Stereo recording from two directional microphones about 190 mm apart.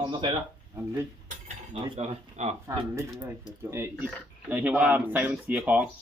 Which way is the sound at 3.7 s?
10° right (ahead or behind).